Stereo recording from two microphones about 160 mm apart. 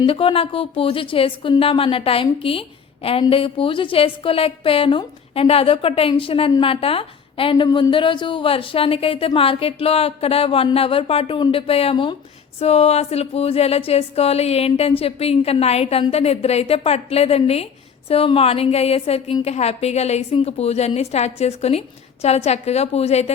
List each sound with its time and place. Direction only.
0.0 s a woman's voice: 35° left (ahead or behind)